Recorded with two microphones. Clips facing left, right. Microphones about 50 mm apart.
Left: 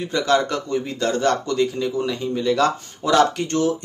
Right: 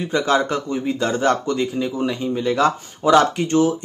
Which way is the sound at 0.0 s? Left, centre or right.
Centre.